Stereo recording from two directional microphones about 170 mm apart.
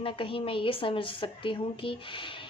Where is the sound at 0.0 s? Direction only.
30° left (ahead or behind).